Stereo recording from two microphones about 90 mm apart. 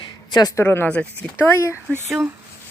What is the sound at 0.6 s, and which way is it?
Speech, 25° left (ahead or behind).